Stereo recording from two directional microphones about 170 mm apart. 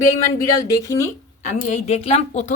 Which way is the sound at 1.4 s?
40° left (ahead or behind).